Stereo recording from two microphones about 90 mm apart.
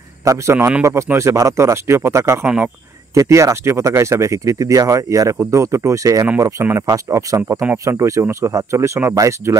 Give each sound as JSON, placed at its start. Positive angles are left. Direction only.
{"t": 0.2, "sound": "speech", "side_deg": -35}
{"t": 2.4, "sound": "speech", "side_deg": -15}
{"t": 3.2, "sound": "speech", "side_deg": -35}